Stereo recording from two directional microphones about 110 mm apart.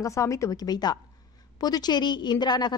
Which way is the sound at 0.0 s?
30° left (ahead or behind).